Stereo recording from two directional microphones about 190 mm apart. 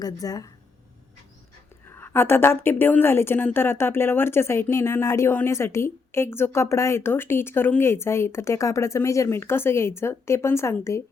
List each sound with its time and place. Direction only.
0.0 s speech: 20° left (ahead or behind)
1.9 s a woman's voice: 10° left (ahead or behind)